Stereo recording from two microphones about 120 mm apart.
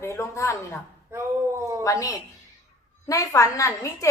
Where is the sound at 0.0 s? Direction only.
20° left (ahead or behind).